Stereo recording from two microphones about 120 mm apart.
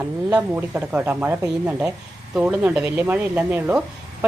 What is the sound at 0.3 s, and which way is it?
Speech, 15° right (ahead or behind).